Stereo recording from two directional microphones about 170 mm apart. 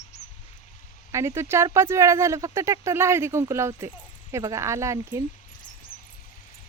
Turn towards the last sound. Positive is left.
turn(degrees=-15)  # may be behind; listen again after turning